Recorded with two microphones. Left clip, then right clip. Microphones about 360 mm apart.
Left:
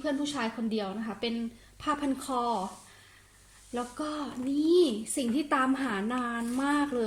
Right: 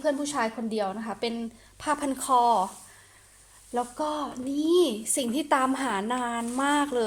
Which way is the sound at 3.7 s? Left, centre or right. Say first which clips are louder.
Right 6 dB; centre.